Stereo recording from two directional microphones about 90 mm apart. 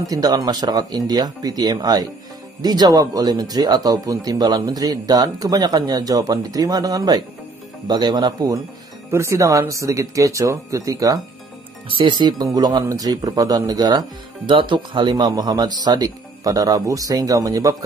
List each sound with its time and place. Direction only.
0.0 s speech: 45° right (ahead or behind)
9.1 s speech: 35° right (ahead or behind)
12.0 s speech: 55° right (ahead or behind)
14.5 s speech: 65° right (ahead or behind); by 17.7 s 40° right (ahead or behind)